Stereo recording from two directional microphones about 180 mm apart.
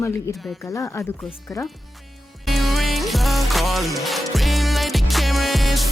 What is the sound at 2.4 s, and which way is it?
Music, centre (ahead or behind).